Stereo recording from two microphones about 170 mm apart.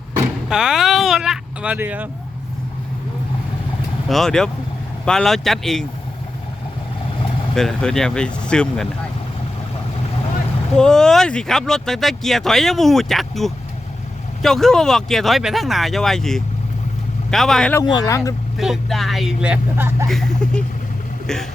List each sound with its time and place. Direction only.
0.4 s a sound: 5° right (ahead or behind)
4.1 s speech: centre (ahead or behind)
7.5 s speech: centre (ahead or behind)
10.8 s speech: 5° left (ahead or behind)
17.9 s speech: 15° left (ahead or behind)
18.5 s speech: centre (ahead or behind)
20.1 s speech: 5° left (ahead or behind)